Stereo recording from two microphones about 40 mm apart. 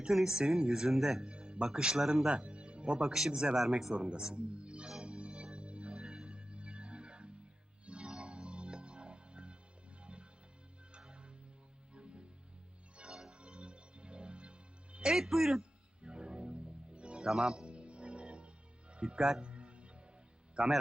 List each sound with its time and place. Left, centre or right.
0.1 s speech: centre
1.2 s speech: right
2.3 s music: right
3.1 s speech: centre
3.9 s speech: right
5.0 s music: right
6.0 s music: centre
15.1 s a man's voice: centre
16.0 s music: right
20.6 s speech: right